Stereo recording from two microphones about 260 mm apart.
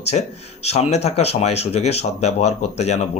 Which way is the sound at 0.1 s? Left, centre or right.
Left.